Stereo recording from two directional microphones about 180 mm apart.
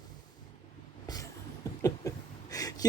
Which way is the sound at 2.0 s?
20° left (ahead or behind).